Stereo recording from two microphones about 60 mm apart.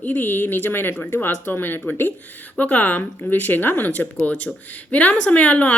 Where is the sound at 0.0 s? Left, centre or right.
Left.